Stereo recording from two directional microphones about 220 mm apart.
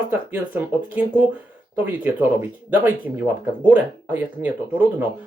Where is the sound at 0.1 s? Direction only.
10° right (ahead or behind).